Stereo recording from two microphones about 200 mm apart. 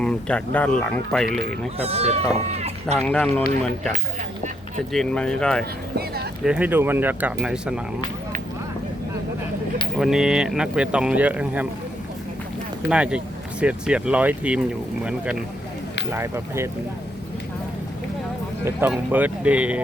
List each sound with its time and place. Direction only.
0.0 s speech: 5° left (ahead or behind)
1.8 s speech: 30° right (ahead or behind)
3.1 s speech: 5° left (ahead or behind)
4.9 s speech: 5° left (ahead or behind)
10.0 s speech: 5° right (ahead or behind)
12.9 s speech: 5° right (ahead or behind)
16.1 s speech: 15° right (ahead or behind)
18.6 s speech: 10° right (ahead or behind)